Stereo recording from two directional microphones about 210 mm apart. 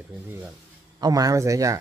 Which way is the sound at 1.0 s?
15° right (ahead or behind).